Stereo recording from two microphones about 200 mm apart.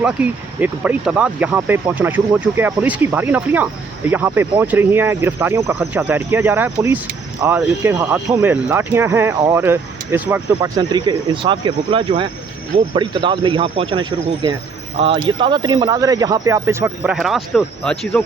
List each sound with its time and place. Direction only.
0.0 s speech: 5° right (ahead or behind)
10.8 s speech: 20° right (ahead or behind); by 18.2 s 5° left (ahead or behind)